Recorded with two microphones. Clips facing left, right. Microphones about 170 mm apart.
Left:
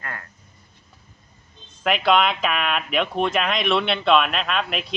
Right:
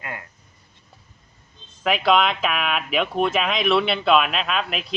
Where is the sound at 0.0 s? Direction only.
15° right (ahead or behind).